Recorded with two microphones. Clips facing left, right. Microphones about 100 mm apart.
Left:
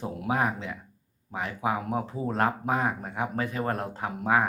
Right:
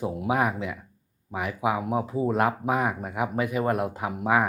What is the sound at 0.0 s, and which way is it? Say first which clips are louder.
Speech: right 3 dB; 5° right (ahead or behind).